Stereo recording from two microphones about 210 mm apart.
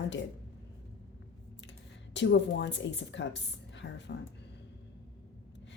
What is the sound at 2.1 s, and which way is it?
A woman's voice, 55° left (ahead or behind).